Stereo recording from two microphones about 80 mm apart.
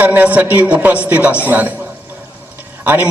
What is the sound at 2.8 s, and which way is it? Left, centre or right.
Speech, right.